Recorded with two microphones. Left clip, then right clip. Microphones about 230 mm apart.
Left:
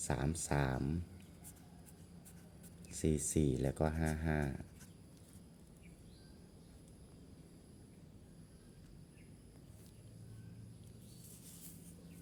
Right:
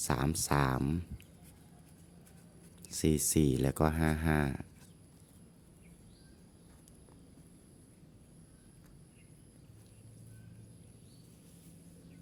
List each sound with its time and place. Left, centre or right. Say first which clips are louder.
0.0 s speech: right 6 dB; right
2.8 s speech: right 6 dB; right